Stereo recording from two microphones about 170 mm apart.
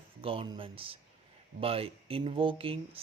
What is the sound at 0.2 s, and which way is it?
Speech, 35° right (ahead or behind).